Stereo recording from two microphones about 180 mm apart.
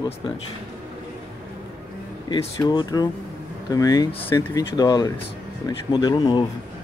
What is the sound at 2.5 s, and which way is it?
Speech, 20° left (ahead or behind).